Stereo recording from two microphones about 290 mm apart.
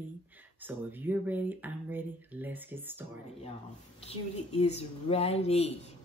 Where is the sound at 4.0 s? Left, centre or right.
Left.